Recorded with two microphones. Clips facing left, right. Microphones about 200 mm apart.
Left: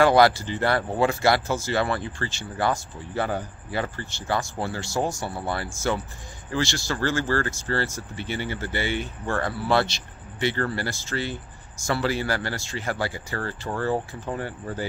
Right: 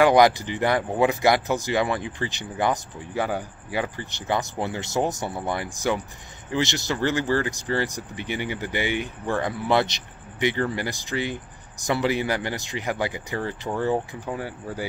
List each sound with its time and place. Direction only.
0.0 s speech: 15° right (ahead or behind)